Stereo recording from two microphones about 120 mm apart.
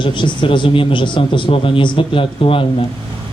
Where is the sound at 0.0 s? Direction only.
40° left (ahead or behind).